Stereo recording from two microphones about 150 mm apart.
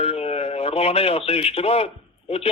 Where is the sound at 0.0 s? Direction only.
40° left (ahead or behind).